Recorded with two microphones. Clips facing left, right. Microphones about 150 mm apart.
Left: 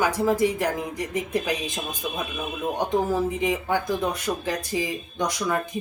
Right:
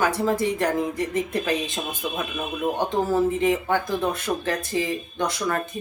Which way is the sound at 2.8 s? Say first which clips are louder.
Right 1 dB; 15° left (ahead or behind).